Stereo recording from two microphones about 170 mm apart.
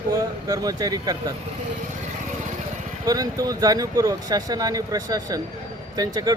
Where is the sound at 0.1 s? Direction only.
20° right (ahead or behind).